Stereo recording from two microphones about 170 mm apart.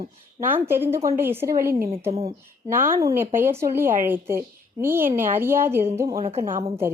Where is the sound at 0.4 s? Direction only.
10° right (ahead or behind).